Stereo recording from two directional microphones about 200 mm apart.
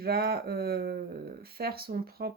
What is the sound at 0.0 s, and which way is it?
Speech, 50° right (ahead or behind).